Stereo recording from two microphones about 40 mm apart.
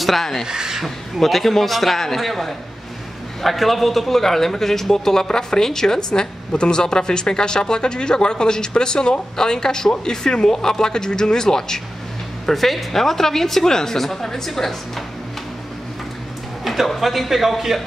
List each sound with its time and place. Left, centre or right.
0.0 s speech: centre
0.5 s speech: centre
0.8 s a man's voice: centre
12.4 s a man's voice: centre
16.6 s a man's voice: centre